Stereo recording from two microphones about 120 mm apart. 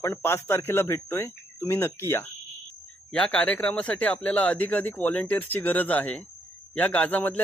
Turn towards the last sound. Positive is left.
turn(degrees=15)  # may be behind; listen again after turning